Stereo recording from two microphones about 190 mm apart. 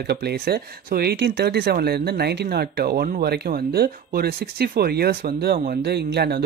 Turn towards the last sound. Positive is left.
turn(degrees=-60)  # may be behind; listen again after turning